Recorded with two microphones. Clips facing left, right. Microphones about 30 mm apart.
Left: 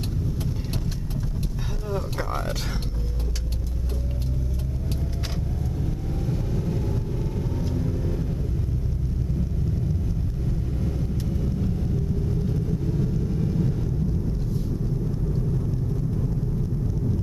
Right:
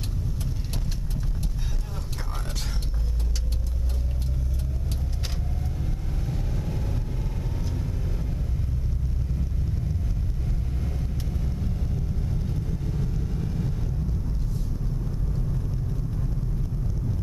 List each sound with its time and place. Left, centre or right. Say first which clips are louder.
1.9 s a sound: left 9 dB; centre
6.2 s vehicle: left 4 dB; centre
10.8 s vehicle: left 5 dB; centre